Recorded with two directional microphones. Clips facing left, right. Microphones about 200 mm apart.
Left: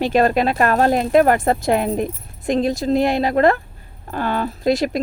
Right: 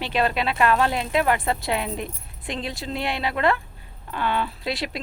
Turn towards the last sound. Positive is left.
turn(degrees=45)  # may be behind; listen again after turning